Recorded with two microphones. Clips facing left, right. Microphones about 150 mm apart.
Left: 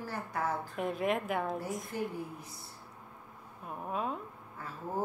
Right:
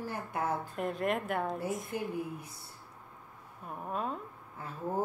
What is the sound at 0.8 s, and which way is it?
Speech, centre (ahead or behind).